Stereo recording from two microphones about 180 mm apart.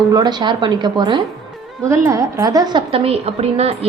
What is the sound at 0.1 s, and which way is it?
A woman's voice, 20° right (ahead or behind).